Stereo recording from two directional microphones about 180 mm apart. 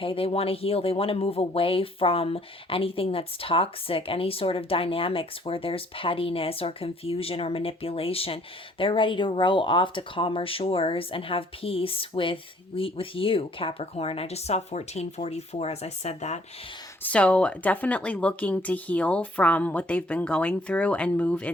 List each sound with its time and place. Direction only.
0.0 s speech: 30° left (ahead or behind)
17.0 s speech: 5° left (ahead or behind)